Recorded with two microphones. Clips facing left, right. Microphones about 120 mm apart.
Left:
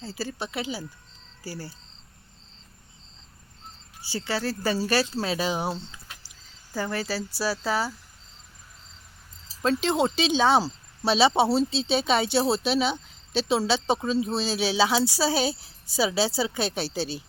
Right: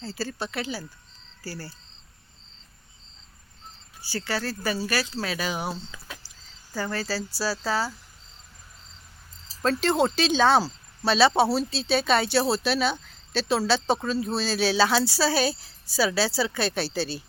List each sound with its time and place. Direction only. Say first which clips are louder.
0.0 s speech: right 1 dB; 20° left (ahead or behind)
4.0 s speech: left 1 dB; 25° left (ahead or behind)
9.6 s speech: right 1 dB; 15° left (ahead or behind)